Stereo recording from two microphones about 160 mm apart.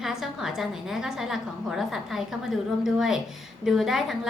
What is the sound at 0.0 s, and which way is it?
A woman's voice, 5° right (ahead or behind).